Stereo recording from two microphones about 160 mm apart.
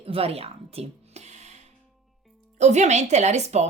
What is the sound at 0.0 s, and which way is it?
Music, 35° right (ahead or behind).